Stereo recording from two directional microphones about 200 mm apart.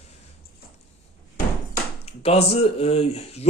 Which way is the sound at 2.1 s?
30° left (ahead or behind).